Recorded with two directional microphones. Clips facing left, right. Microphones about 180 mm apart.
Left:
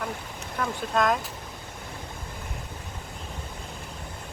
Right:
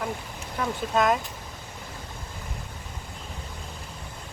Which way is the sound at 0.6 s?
5° right (ahead or behind).